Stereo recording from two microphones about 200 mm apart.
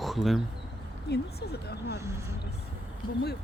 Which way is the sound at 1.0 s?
55° left (ahead or behind).